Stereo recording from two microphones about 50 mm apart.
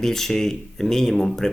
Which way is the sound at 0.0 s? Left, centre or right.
Centre.